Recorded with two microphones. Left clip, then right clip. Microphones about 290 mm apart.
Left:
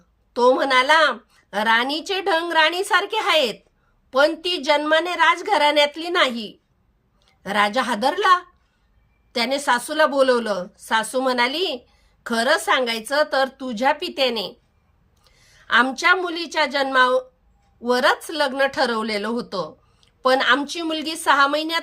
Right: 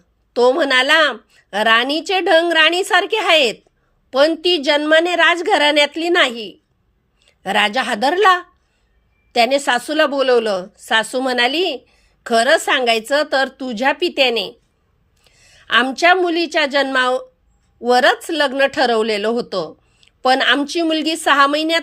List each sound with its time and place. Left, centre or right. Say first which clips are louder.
0.3 s a woman's voice: right 3 dB; centre
15.2 s a sound: right 4 dB; centre
16.2 s speech: right 6 dB; centre